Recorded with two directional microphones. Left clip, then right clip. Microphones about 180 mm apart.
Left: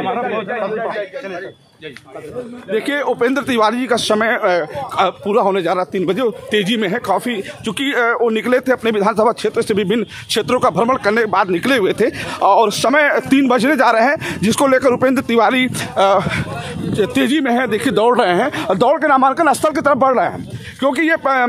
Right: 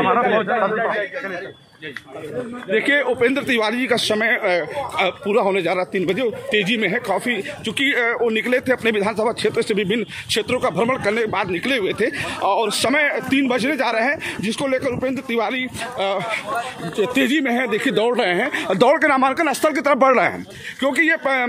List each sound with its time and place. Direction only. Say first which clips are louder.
0.0 s speech: right 3 dB; 5° left (ahead or behind)
2.7 s a man's voice: even; 20° left (ahead or behind)
18.7 s speech: left 2 dB; 15° left (ahead or behind)
19.9 s speech: left 1 dB; 10° left (ahead or behind)
20.8 s speech: left 3 dB; 25° left (ahead or behind)